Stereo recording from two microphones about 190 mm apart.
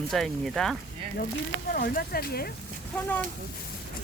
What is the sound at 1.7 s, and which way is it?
Speech, 50° left (ahead or behind).